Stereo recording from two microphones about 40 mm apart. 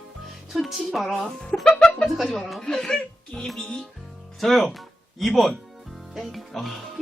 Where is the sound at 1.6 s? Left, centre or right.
Centre.